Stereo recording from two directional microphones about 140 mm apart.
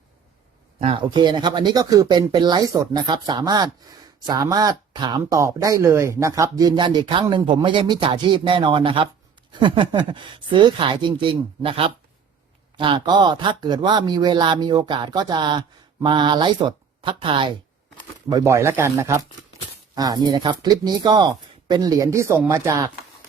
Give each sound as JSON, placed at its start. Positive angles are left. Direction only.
{"t": 1.1, "sound": "speech", "side_deg": -30}
{"t": 18.3, "sound": "speech", "side_deg": -25}